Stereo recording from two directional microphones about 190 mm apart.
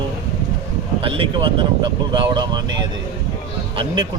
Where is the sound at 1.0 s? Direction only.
30° right (ahead or behind).